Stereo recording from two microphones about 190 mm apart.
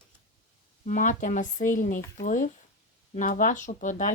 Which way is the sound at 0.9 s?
45° left (ahead or behind).